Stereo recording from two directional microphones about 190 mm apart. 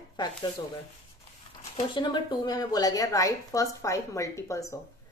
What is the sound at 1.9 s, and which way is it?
A woman's voice, 25° left (ahead or behind).